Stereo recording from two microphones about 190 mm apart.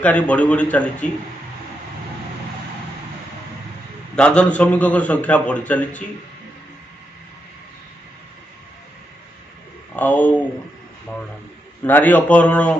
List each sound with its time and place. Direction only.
0.0 s a man's voice: 5° left (ahead or behind)
4.1 s a man's voice: 5° left (ahead or behind)
9.9 s a man's voice: 10° left (ahead or behind)
11.8 s a man's voice: 10° left (ahead or behind)